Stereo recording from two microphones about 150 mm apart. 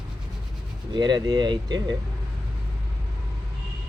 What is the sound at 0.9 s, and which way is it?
Speech, 30° right (ahead or behind).